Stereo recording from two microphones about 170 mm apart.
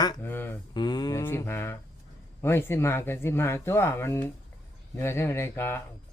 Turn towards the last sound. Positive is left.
turn(degrees=15)  # may be behind; listen again after turning